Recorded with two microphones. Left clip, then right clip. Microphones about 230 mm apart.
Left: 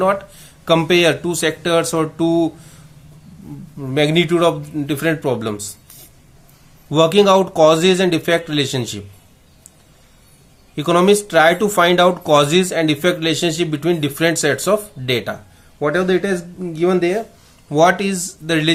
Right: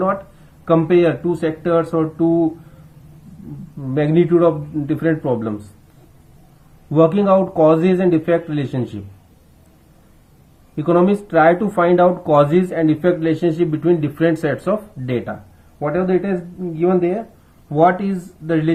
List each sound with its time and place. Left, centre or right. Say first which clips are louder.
0.6 s speech: left 1 dB; centre
3.9 s speech: even; centre
6.9 s speech: left 2 dB; centre
10.8 s speech: left 2 dB; centre